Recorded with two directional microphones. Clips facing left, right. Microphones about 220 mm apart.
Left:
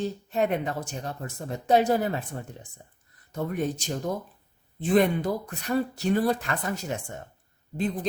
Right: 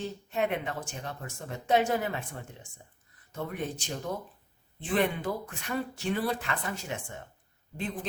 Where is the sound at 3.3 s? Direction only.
45° left (ahead or behind).